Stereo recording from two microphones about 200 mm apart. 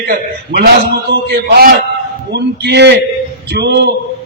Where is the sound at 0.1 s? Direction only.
50° right (ahead or behind).